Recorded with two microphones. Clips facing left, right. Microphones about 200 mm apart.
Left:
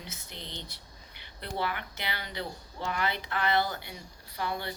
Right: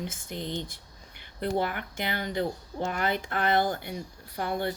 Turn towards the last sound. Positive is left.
turn(degrees=-50)  # may be behind; listen again after turning